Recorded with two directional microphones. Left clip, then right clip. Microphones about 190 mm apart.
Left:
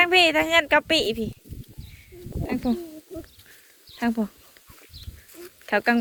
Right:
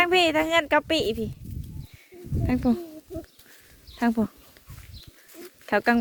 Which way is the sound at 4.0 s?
30° right (ahead or behind).